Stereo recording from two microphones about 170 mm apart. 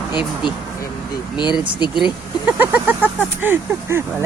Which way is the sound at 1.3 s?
25° left (ahead or behind).